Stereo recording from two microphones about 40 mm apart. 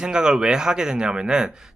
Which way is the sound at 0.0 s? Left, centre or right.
Centre.